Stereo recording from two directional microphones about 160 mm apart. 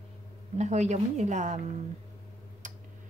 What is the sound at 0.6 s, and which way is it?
Speech, 45° right (ahead or behind).